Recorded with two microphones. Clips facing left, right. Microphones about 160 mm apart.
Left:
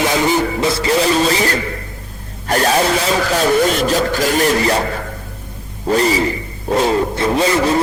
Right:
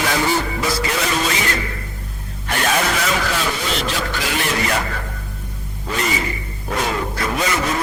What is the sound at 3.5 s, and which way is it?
Speech, 50° left (ahead or behind).